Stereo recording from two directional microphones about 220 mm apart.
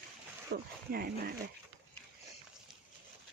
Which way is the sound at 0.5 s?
45° right (ahead or behind).